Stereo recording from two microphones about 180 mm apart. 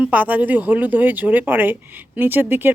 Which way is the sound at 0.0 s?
10° right (ahead or behind).